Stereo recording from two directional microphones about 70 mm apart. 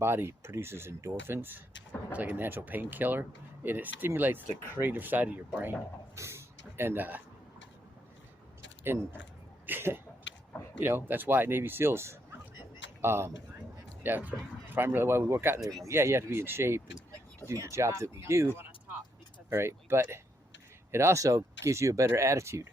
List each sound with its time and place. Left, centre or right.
0.0 s speech: right
6.1 s speech: right
9.6 s speech: right
14.0 s speech: right
19.5 s speech: right
22.0 s speech: right
22.3 s speech: right